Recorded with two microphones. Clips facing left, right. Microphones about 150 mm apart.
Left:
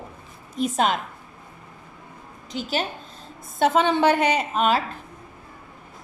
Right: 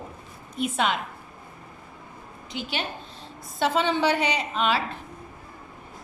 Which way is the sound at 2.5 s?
40° left (ahead or behind).